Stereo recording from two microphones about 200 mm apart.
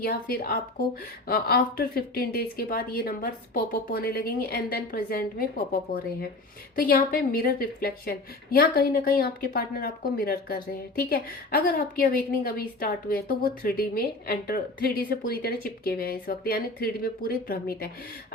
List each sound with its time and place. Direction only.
0.0 s a woman's voice: 50° left (ahead or behind)